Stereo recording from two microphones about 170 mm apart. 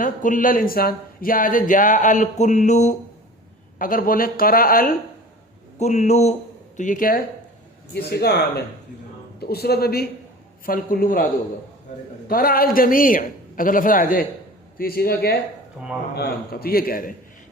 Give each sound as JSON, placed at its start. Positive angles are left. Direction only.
{"t": 0.0, "sound": "speech", "side_deg": 50}
{"t": 3.8, "sound": "a man's voice", "side_deg": 55}
{"t": 5.8, "sound": "speech", "side_deg": 40}
{"t": 7.9, "sound": "a man's voice", "side_deg": 70}
{"t": 12.3, "sound": "a man's voice", "side_deg": 55}
{"t": 15.8, "sound": "speech", "side_deg": -5}
{"t": 16.1, "sound": "a man's voice", "side_deg": 70}